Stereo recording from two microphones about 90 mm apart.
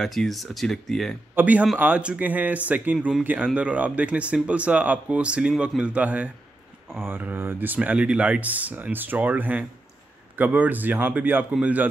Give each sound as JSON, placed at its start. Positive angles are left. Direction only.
{"t": 0.0, "sound": "speech", "side_deg": 0}
{"t": 1.3, "sound": "speech", "side_deg": -15}